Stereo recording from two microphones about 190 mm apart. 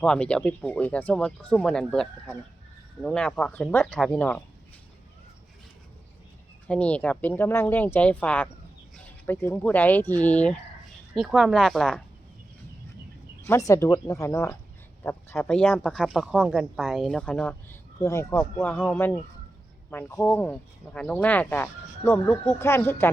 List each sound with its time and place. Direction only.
0.0 s speech: 5° left (ahead or behind)
6.7 s speech: 5° left (ahead or behind)
13.4 s speech: 15° left (ahead or behind)